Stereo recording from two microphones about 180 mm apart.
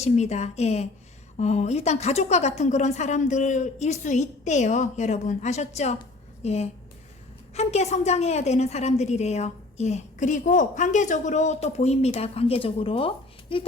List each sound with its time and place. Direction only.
0.0 s a woman's voice: 40° left (ahead or behind)